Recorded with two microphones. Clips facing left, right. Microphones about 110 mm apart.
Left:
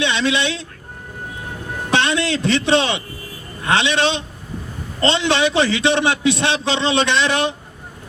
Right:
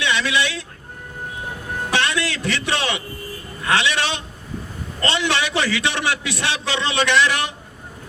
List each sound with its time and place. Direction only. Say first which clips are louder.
0.0 s speech: left 2 dB; 25° left (ahead or behind)
1.9 s a man's voice: left 4 dB; 25° left (ahead or behind)